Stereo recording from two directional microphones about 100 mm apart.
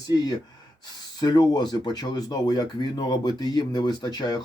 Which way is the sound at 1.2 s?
45° left (ahead or behind).